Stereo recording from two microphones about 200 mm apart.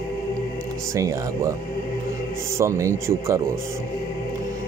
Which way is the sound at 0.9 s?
15° right (ahead or behind).